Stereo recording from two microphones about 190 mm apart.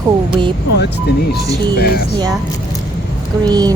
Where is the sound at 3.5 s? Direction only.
20° right (ahead or behind).